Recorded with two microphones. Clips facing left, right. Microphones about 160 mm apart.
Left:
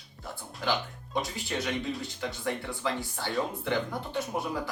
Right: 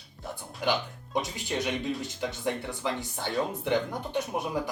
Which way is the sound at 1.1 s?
20° right (ahead or behind).